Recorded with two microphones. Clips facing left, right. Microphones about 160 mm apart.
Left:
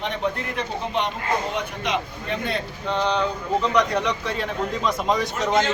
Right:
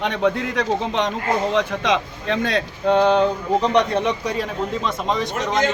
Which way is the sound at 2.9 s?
55° right (ahead or behind).